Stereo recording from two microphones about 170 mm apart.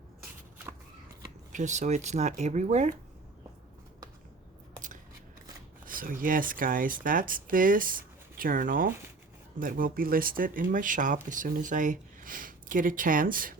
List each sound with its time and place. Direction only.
1.5 s speech: 45° right (ahead or behind)
5.8 s speech: 55° right (ahead or behind)